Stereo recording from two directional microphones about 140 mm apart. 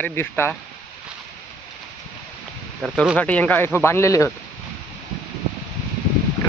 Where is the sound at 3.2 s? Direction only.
10° left (ahead or behind).